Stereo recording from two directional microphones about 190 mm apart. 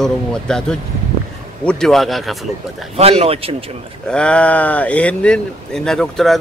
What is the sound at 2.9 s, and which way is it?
Speech, 30° right (ahead or behind).